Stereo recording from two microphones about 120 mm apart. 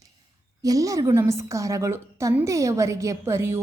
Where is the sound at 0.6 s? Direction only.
30° right (ahead or behind).